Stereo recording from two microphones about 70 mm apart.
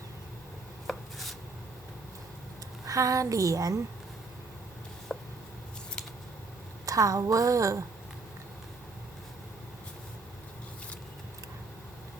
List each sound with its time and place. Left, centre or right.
0.9 s chopping: centre
2.8 s a woman's voice: right
5.1 s a sound: centre
6.8 s a woman's voice: right